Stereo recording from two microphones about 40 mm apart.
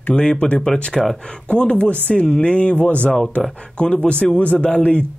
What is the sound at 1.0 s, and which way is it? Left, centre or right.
Speech, centre.